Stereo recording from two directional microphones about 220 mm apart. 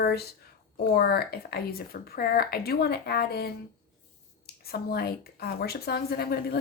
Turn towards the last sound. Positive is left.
turn(degrees=45)  # may be behind; listen again after turning